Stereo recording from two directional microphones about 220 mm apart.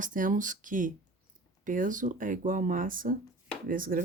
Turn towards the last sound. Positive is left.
turn(degrees=-40)  # may be behind; listen again after turning